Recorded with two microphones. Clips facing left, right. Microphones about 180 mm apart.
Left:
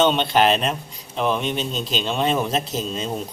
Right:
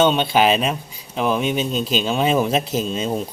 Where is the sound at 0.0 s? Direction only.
Centre (ahead or behind).